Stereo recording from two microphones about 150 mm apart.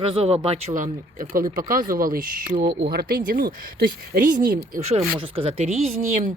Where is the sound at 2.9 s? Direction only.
90° right; by 4.8 s 65° right (ahead or behind).